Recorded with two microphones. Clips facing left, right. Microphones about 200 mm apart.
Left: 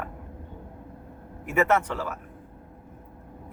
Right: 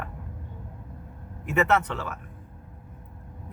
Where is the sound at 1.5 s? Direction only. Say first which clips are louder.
Even; 10° left (ahead or behind).